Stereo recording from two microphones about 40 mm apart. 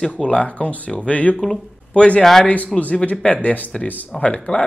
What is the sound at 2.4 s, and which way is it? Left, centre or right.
Speech, left.